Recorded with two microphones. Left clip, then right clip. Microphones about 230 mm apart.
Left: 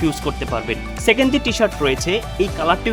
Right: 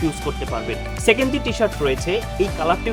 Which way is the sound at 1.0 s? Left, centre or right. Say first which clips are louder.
Left 2 dB; left.